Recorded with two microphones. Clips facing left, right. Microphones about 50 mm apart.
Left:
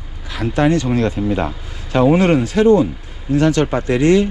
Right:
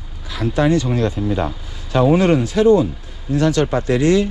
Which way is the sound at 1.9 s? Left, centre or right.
Left.